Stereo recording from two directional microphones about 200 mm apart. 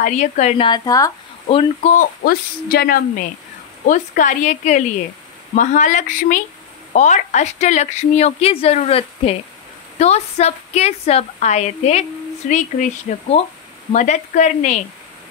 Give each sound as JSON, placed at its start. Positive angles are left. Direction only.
{"t": 0.0, "sound": "a woman's voice", "side_deg": 35}
{"t": 0.7, "sound": "speech", "side_deg": 20}
{"t": 1.5, "sound": "speech", "side_deg": 25}
{"t": 2.0, "sound": "a woman's voice", "side_deg": 50}